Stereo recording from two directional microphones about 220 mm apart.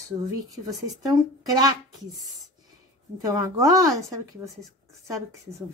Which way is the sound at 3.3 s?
15° right (ahead or behind).